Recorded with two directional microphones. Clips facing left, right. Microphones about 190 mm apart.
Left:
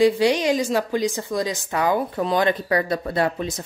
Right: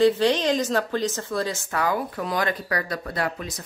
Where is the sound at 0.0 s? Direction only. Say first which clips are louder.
Left 2 dB; 10° left (ahead or behind).